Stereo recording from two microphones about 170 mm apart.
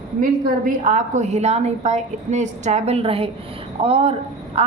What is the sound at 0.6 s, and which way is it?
A woman's voice, 45° right (ahead or behind).